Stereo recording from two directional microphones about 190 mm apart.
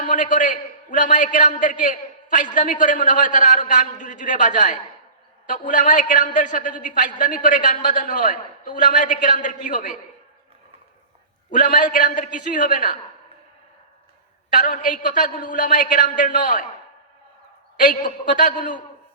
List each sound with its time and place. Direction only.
0.0 s a man's voice: 45° left (ahead or behind)
11.5 s a man's voice: 45° left (ahead or behind)
14.5 s a man's voice: 45° left (ahead or behind)
17.7 s a man's voice: 45° left (ahead or behind)